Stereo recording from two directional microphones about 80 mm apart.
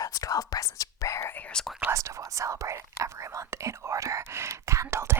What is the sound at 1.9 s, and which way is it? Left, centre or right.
Speech, right.